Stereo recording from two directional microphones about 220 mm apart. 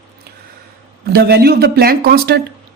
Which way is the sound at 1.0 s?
45° right (ahead or behind).